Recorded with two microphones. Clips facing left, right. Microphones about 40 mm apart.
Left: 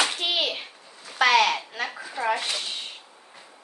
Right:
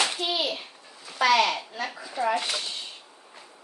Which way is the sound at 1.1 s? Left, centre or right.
Left.